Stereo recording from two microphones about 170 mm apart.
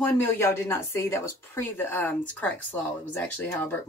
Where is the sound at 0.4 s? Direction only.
15° left (ahead or behind).